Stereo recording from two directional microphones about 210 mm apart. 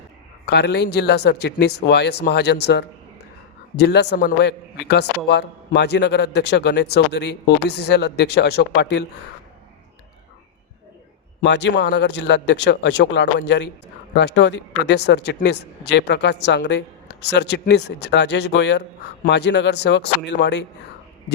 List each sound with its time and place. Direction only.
0.4 s a man's voice: 55° left (ahead or behind)
11.4 s a woman's voice: 55° left (ahead or behind)